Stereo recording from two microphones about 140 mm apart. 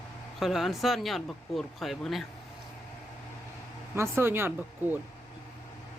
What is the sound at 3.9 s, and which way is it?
Speech, 15° right (ahead or behind).